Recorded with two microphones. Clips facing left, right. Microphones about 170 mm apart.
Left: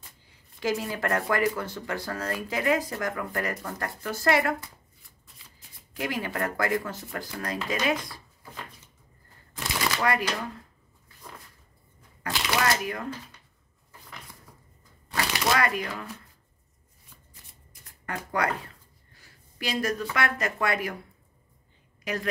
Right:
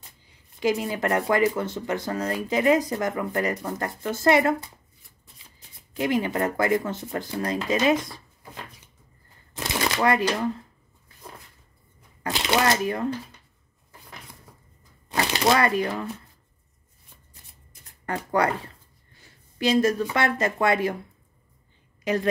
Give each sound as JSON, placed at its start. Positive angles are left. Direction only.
{"t": 0.6, "sound": "speech", "side_deg": -20}
{"t": 5.9, "sound": "speech", "side_deg": -20}
{"t": 9.5, "sound": "shuffling cards", "side_deg": -25}
{"t": 12.2, "sound": "speech", "side_deg": -25}
{"t": 15.0, "sound": "shuffling cards", "side_deg": -25}
{"t": 18.0, "sound": "speech", "side_deg": -30}
{"t": 19.6, "sound": "speech", "side_deg": -25}
{"t": 22.0, "sound": "a woman's voice", "side_deg": -25}